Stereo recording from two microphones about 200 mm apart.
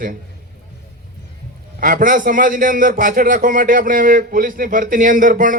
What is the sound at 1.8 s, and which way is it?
A man's voice, 45° right (ahead or behind).